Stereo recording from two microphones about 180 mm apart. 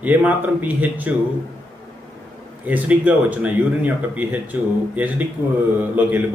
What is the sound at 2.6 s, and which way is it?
Speech, 10° right (ahead or behind).